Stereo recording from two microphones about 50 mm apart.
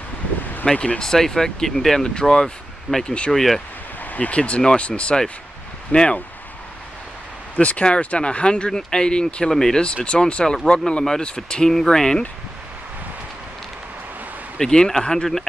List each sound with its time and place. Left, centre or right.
0.7 s speech: left
1.0 s speech: centre
4.0 s a sound: left
4.4 s speech: centre
7.6 s speech: left
14.6 s speech: centre